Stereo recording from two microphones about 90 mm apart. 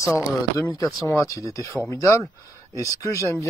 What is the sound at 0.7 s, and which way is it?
Speech, 35° left (ahead or behind).